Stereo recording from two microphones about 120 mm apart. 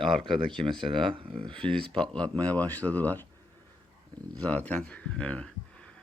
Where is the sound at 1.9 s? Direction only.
10° left (ahead or behind).